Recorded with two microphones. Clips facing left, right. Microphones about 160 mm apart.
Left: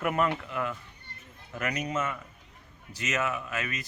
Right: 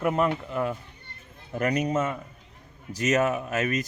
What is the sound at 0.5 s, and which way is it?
Speech, 35° right (ahead or behind).